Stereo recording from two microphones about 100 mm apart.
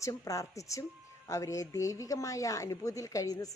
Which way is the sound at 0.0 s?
35° left (ahead or behind).